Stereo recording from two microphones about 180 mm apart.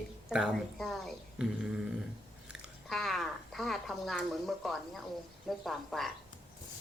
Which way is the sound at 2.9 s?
Centre (ahead or behind).